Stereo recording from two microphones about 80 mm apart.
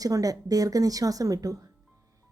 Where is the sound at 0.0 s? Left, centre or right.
Right.